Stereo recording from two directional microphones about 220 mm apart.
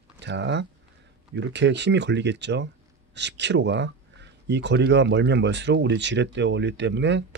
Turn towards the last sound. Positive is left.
turn(degrees=-55)  # may be behind; listen again after turning